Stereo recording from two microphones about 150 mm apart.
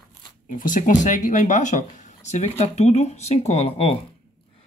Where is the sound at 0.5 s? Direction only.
60° left (ahead or behind); by 4.0 s 45° left (ahead or behind).